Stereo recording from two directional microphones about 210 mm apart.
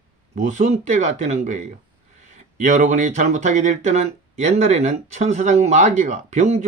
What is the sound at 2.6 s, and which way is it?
Speech, 35° right (ahead or behind).